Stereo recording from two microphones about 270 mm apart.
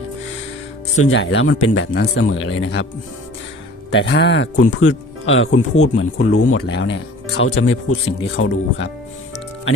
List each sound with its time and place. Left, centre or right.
0.9 s speech: left
3.9 s speech: left
4.5 s speech: left